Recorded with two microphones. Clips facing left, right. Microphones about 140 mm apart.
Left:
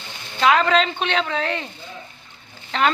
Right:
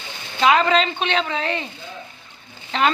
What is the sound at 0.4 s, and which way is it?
Speech, 5° right (ahead or behind).